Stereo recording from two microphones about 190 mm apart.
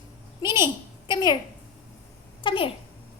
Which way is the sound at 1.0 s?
20° left (ahead or behind).